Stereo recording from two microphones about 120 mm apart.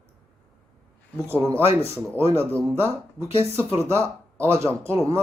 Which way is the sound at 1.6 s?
55° left (ahead or behind).